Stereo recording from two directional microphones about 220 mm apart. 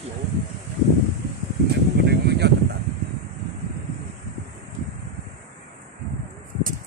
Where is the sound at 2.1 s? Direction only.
50° right (ahead or behind).